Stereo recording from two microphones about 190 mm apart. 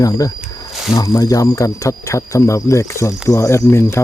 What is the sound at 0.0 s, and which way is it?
Speech, 20° left (ahead or behind).